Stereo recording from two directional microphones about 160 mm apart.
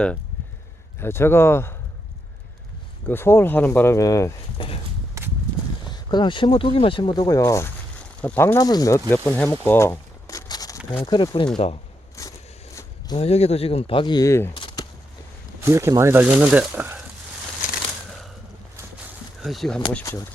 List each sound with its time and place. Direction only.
0.9 s speech: 15° left (ahead or behind)
3.1 s speech: 15° left (ahead or behind)
4.5 s speech: 35° left (ahead or behind)
5.2 s walk: 20° right (ahead or behind)
5.9 s speech: 25° left (ahead or behind)
12.2 s a sound: 20° left (ahead or behind)
13.1 s speech: 40° left (ahead or behind); by 14.5 s 15° left (ahead or behind)
14.5 s a sound: 30° left (ahead or behind)
15.6 s speech: 20° right (ahead or behind)
19.4 s speech: centre (ahead or behind)